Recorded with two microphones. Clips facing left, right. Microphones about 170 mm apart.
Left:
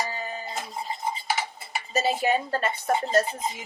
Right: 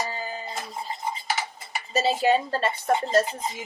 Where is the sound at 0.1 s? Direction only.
30° right (ahead or behind).